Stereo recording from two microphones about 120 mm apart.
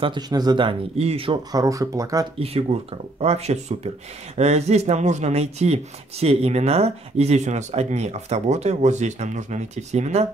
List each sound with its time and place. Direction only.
0.0 s speech: 35° right (ahead or behind)
0.9 s speech: 55° right (ahead or behind)
1.5 s speech: 30° right (ahead or behind)
2.3 s speech: 55° right (ahead or behind)